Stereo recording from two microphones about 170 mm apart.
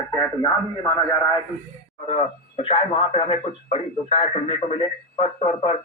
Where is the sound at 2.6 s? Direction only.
30° left (ahead or behind).